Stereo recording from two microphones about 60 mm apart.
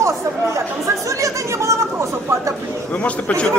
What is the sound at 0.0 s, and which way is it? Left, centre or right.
Chatter, right.